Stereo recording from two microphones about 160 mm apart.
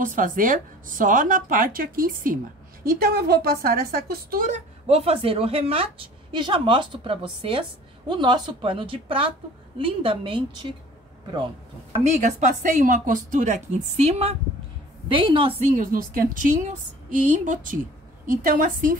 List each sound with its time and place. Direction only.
0.0 s a woman's voice: 55° right (ahead or behind)
2.8 s a woman's voice: 70° right (ahead or behind)
4.8 s a woman's voice: 40° right (ahead or behind)
11.9 s a woman's voice: 45° right (ahead or behind)
15.8 s a woman's voice: 60° right (ahead or behind)